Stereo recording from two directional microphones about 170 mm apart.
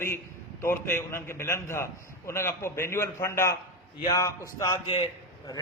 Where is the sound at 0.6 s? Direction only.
15° left (ahead or behind).